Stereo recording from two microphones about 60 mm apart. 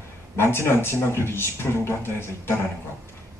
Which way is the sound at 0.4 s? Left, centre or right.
Left.